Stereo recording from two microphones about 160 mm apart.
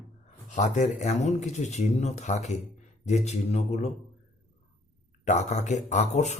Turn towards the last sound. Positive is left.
turn(degrees=45)  # may be behind; listen again after turning